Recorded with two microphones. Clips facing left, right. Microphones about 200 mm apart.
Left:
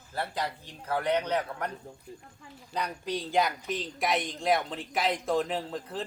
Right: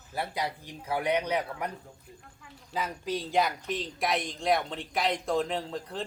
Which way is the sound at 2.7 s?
Centre (ahead or behind).